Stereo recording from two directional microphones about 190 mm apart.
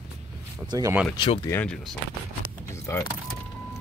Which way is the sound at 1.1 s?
25° left (ahead or behind).